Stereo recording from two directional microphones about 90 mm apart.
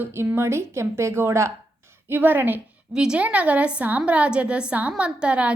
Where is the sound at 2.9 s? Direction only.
10° right (ahead or behind).